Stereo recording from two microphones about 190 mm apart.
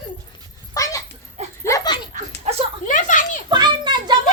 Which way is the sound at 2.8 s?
45° left (ahead or behind).